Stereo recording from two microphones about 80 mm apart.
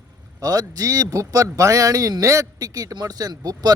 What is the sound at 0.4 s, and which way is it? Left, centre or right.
Speech, right.